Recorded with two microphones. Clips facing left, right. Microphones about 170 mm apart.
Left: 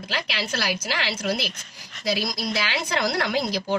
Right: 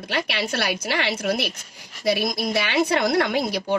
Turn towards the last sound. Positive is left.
turn(degrees=-55)  # may be behind; listen again after turning